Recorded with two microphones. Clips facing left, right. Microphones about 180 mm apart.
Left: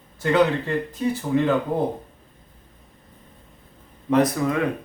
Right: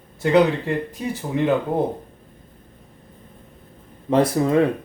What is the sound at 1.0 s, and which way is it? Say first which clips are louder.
Speech: left 3 dB; 15° right (ahead or behind).